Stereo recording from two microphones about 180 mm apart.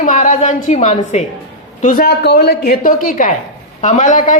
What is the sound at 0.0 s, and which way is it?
A man's voice, 45° left (ahead or behind).